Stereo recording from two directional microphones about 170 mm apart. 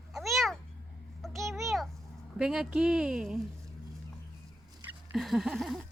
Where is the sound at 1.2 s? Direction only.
Centre (ahead or behind).